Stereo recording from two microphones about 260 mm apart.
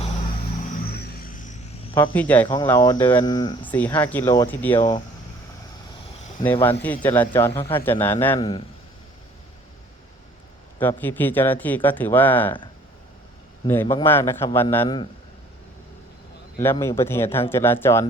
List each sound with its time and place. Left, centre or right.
0.8 s a sound: left
2.0 s speech: centre
6.4 s speech: centre
10.8 s speech: centre
13.7 s speech: centre
16.6 s speech: centre